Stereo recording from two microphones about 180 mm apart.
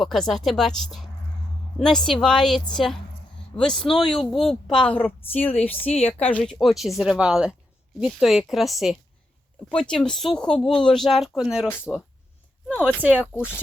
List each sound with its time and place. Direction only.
0.0 s speech: centre (ahead or behind)
12.8 s speech: 5° right (ahead or behind)